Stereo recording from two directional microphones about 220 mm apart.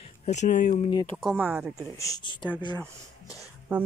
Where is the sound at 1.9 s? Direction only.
15° left (ahead or behind).